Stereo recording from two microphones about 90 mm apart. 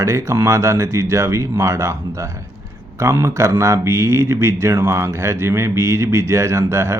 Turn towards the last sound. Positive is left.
turn(degrees=-30)  # may be behind; listen again after turning